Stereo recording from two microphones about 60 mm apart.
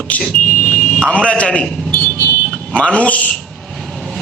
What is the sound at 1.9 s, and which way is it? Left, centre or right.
Vehicle, left.